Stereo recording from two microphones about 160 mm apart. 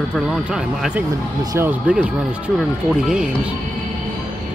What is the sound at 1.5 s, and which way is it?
Music, 15° right (ahead or behind).